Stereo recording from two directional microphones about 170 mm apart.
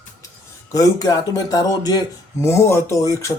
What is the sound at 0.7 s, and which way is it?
Speech, 20° left (ahead or behind).